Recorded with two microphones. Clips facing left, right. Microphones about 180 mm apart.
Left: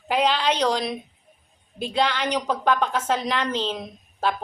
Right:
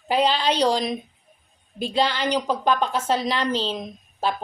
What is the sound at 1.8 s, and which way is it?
Speech, 30° right (ahead or behind).